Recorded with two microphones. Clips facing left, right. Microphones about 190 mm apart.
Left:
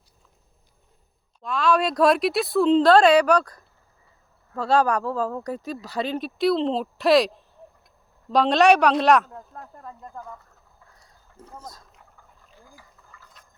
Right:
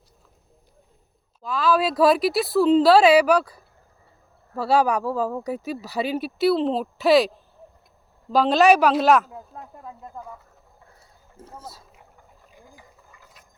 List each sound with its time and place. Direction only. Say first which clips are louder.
1.4 s speech: right 1 dB; centre (ahead or behind)
11.0 s a sound: right 1 dB; 5° right (ahead or behind)
12.5 s ratchet: right 2 dB; 15° right (ahead or behind)